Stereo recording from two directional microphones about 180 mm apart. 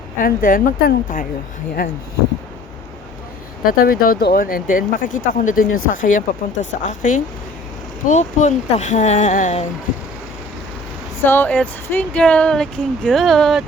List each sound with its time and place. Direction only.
0.2 s speech: 50° left (ahead or behind)
3.7 s speech: 55° left (ahead or behind)
11.2 s speech: 10° left (ahead or behind)